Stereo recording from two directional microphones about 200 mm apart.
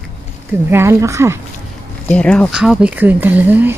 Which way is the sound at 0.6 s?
10° right (ahead or behind).